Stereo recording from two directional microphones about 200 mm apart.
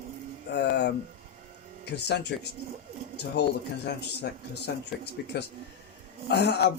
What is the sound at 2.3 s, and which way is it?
Speech, 55° left (ahead or behind).